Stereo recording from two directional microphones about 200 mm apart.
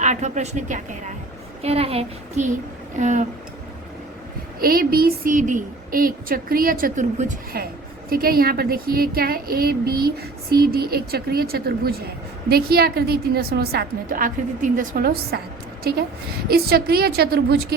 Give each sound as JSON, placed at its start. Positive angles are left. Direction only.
{"t": 0.0, "sound": "speech", "side_deg": -35}
{"t": 4.6, "sound": "a woman's voice", "side_deg": -50}